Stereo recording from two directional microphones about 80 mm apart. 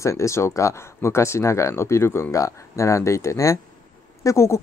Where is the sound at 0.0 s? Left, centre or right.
Left.